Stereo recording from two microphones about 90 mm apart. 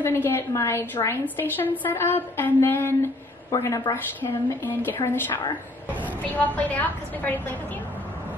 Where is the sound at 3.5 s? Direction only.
35° left (ahead or behind).